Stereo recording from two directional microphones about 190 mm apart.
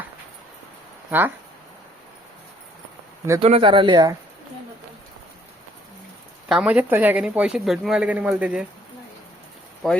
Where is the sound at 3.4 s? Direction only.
30° right (ahead or behind).